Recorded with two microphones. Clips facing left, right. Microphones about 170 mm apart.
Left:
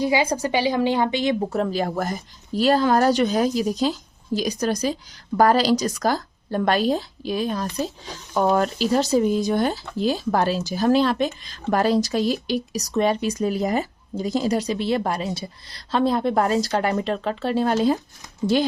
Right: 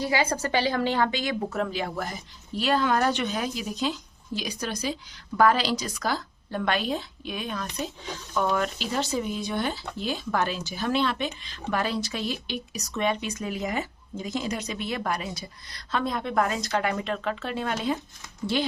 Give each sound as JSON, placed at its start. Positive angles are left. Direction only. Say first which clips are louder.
{"t": 0.0, "sound": "speech", "louder": "left 5 dB", "side_deg": 15}